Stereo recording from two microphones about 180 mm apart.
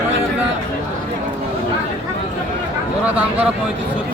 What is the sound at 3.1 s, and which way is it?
Speech, 10° right (ahead or behind).